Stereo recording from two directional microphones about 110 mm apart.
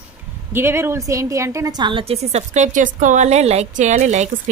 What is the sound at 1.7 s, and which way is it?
Speech, 45° right (ahead or behind).